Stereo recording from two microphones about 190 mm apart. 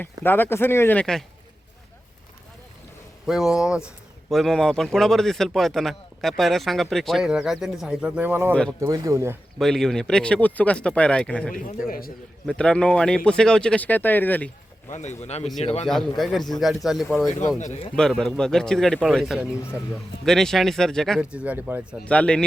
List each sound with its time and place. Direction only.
0.0 s speech: 10° left (ahead or behind)
3.2 s speech: centre (ahead or behind)
9.6 s speech: centre (ahead or behind)
11.9 s a man's voice: 50° left (ahead or behind)
12.5 s speech: 5° left (ahead or behind)
14.9 s speech: 35° left (ahead or behind)
15.9 s speech: centre (ahead or behind)
17.6 s speech: 40° left (ahead or behind)
17.9 s speech: 5° left (ahead or behind)
22.0 s speech: 5° left (ahead or behind)